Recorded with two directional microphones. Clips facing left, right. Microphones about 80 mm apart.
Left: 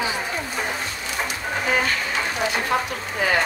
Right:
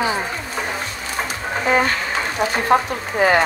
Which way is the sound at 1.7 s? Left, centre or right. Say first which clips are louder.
Right 5 dB; right.